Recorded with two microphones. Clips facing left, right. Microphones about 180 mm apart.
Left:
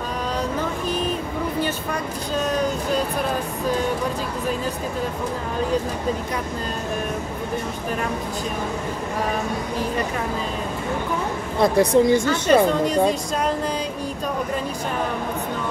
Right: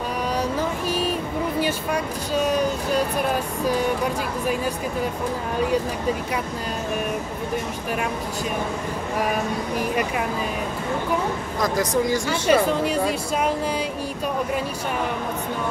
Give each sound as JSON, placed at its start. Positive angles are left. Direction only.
{"t": 1.6, "sound": "a sound", "side_deg": -10}
{"t": 11.6, "sound": "speech", "side_deg": 30}
{"t": 12.3, "sound": "speech", "side_deg": -10}